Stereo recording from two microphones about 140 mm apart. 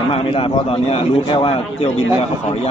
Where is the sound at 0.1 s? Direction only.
40° left (ahead or behind).